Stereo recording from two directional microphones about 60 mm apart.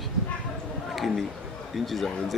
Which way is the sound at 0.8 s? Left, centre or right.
Centre.